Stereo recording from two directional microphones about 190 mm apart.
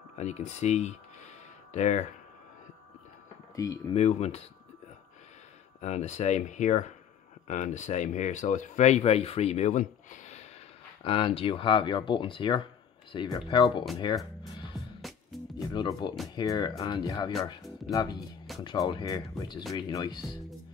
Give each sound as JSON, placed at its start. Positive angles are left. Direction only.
{"t": 0.1, "sound": "speech", "side_deg": 35}
{"t": 3.5, "sound": "speech", "side_deg": 20}
{"t": 3.9, "sound": "speech", "side_deg": 35}
{"t": 5.8, "sound": "speech", "side_deg": 40}
{"t": 11.1, "sound": "speech", "side_deg": 30}
{"t": 14.7, "sound": "music", "side_deg": 0}
{"t": 15.7, "sound": "speech", "side_deg": 25}
{"t": 18.6, "sound": "speech", "side_deg": 20}